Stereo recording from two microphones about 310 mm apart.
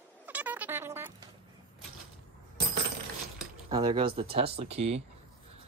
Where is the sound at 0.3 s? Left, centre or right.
Centre.